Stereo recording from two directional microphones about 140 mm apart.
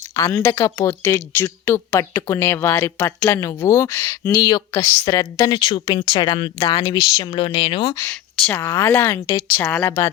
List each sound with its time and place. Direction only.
0.2 s speech: 20° left (ahead or behind); by 7.9 s 35° left (ahead or behind)
8.1 s speech: 15° left (ahead or behind)